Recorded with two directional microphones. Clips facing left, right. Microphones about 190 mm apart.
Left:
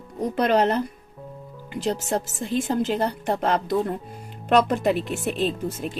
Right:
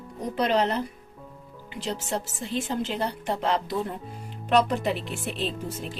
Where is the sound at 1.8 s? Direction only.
45° left (ahead or behind).